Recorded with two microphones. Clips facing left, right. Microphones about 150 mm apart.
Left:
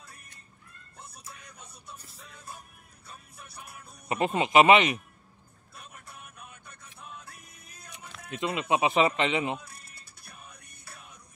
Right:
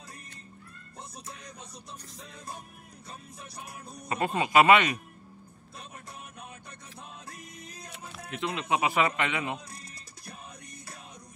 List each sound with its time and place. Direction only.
2.2 s music: 35° right (ahead or behind)
4.1 s speech: 25° left (ahead or behind)
7.0 s music: 30° right (ahead or behind)
8.4 s speech: 20° left (ahead or behind)